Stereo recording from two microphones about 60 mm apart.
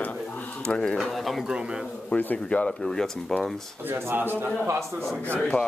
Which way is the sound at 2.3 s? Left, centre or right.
Centre.